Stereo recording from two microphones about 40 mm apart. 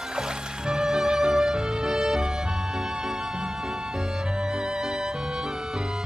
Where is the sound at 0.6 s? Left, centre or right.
Centre.